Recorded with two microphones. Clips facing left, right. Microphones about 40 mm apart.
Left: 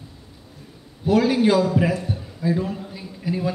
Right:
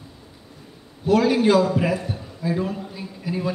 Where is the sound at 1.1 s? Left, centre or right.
Centre.